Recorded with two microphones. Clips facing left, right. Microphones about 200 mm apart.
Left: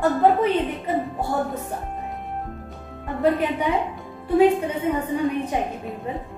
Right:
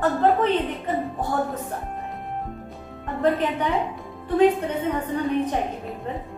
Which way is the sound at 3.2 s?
10° left (ahead or behind).